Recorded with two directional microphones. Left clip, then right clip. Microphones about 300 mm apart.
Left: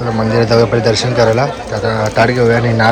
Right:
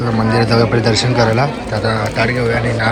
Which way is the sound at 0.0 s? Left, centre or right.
Centre.